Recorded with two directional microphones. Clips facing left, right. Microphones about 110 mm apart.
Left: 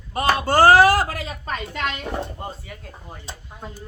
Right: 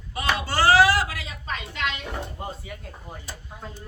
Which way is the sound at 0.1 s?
45° left (ahead or behind).